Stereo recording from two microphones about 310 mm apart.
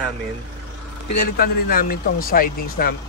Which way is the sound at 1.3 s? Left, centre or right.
Left.